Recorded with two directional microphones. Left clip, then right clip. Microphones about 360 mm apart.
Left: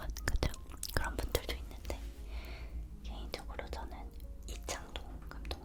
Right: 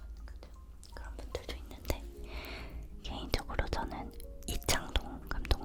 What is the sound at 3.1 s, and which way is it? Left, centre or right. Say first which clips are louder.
Whispering: right 7 dB; right.